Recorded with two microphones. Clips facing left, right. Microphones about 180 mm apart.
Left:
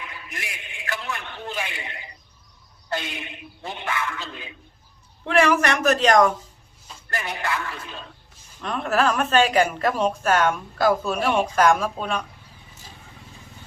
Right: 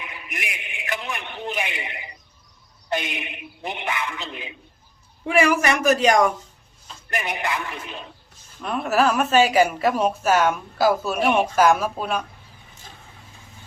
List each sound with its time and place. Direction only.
0.0 s a sound: 20° right (ahead or behind)
2.9 s a woman's voice: 20° right (ahead or behind)
8.6 s a woman's voice: 5° right (ahead or behind)
11.2 s a woman's voice: 20° right (ahead or behind)
11.4 s speech: 5° right (ahead or behind)